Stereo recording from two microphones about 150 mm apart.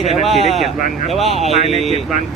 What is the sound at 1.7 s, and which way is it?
Speech, 40° left (ahead or behind).